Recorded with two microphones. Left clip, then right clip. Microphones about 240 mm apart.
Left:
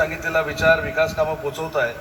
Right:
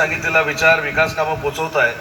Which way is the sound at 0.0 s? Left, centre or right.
Left.